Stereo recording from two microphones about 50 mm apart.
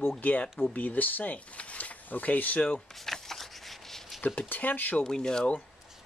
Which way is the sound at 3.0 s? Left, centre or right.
Centre.